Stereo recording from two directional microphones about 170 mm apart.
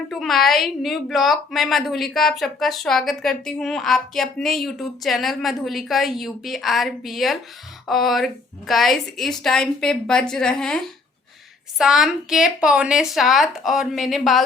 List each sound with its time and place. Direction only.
0.1 s a woman's voice: centre (ahead or behind)